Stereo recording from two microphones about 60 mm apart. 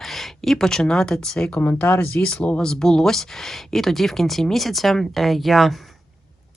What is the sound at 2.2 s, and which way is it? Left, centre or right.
Speech, centre.